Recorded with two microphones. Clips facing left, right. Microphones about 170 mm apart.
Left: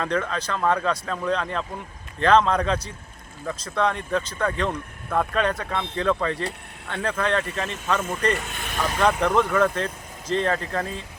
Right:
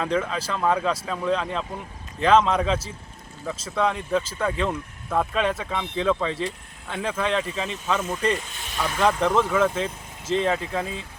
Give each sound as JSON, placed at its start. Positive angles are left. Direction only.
{"t": 0.0, "sound": "speech", "side_deg": -5}
{"t": 8.3, "sound": "speech", "side_deg": 70}
{"t": 9.0, "sound": "speech", "side_deg": 0}